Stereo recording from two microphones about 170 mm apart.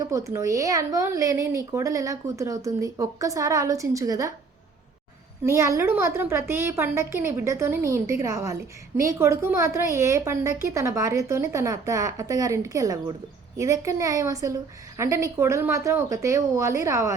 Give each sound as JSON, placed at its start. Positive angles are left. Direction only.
{"t": 0.0, "sound": "speech", "side_deg": -20}
{"t": 5.4, "sound": "a woman's voice", "side_deg": -15}